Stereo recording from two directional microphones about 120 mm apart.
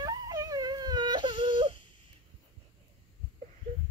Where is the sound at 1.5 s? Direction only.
45° right (ahead or behind).